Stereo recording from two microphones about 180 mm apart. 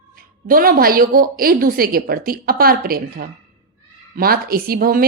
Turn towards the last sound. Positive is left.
turn(degrees=-55)  # may be behind; listen again after turning